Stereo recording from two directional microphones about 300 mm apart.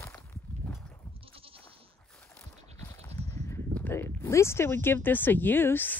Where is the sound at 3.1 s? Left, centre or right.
Right.